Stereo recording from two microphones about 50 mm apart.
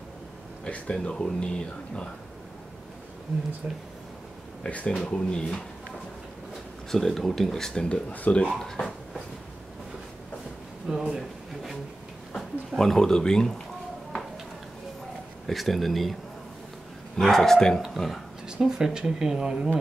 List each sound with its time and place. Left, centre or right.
0.9 s speech: centre
3.6 s speech: right
4.6 s speech: left
5.1 s speech: centre
6.9 s speech: centre
8.1 s speech: left
8.5 s speech: centre
10.9 s a sound: centre
12.4 s speech: centre
15.4 s speech: centre
17.2 s speech: centre
18.5 s speech: centre